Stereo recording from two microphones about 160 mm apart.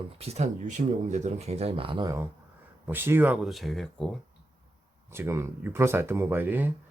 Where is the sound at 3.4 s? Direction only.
Centre (ahead or behind).